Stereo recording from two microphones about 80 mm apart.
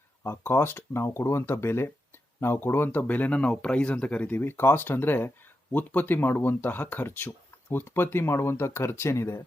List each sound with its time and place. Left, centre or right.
0.3 s speech: left
3.0 s speech: centre; by 9.4 s left